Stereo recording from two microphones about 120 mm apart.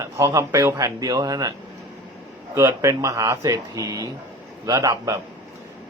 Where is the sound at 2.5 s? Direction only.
25° right (ahead or behind).